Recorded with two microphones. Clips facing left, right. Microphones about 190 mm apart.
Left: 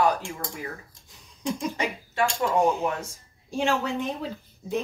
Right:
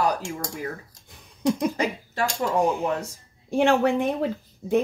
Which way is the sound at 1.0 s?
60° right (ahead or behind).